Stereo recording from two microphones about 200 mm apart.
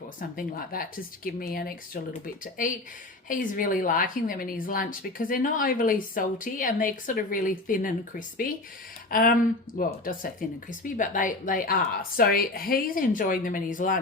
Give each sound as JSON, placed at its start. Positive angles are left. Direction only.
{"t": 0.3, "sound": "a woman's voice", "side_deg": 45}
{"t": 9.0, "sound": "a woman's voice", "side_deg": 45}